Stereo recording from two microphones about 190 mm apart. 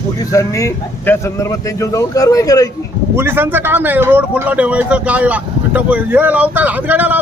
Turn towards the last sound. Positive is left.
turn(degrees=-10)  # may be behind; listen again after turning